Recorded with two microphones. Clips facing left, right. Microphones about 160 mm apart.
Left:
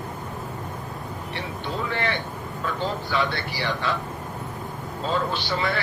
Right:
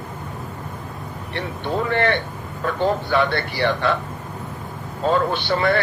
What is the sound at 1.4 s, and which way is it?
A man's voice, 55° right (ahead or behind).